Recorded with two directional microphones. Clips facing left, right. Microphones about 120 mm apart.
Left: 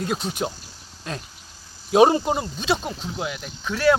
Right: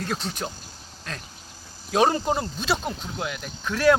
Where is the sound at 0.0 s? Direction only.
10° left (ahead or behind).